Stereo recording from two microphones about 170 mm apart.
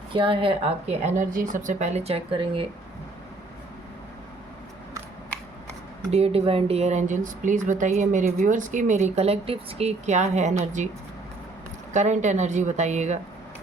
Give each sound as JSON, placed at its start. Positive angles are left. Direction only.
{"t": 0.1, "sound": "a woman's voice", "side_deg": -30}
{"t": 6.1, "sound": "speech", "side_deg": -35}
{"t": 11.9, "sound": "speech", "side_deg": -45}